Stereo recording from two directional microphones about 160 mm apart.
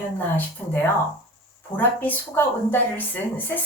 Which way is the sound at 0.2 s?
15° left (ahead or behind).